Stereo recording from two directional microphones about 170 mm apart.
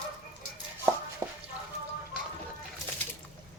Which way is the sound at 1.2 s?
15° right (ahead or behind).